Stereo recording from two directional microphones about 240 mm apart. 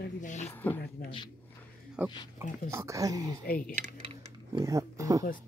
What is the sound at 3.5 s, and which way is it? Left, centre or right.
Speech, left.